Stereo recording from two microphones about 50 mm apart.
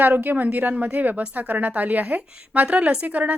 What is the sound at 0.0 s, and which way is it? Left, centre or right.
A woman's voice, right.